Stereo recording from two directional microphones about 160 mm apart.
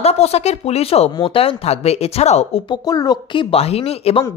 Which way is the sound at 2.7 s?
25° left (ahead or behind).